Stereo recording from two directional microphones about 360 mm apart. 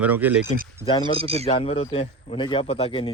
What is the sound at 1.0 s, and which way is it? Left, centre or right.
Speech, centre.